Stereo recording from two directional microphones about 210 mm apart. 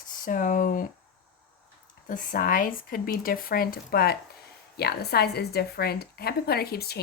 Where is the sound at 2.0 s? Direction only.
40° left (ahead or behind).